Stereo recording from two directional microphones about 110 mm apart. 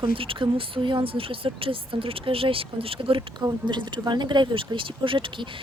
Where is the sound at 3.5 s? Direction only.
45° right (ahead or behind).